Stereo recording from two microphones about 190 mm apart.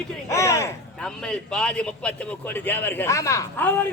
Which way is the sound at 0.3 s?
15° left (ahead or behind).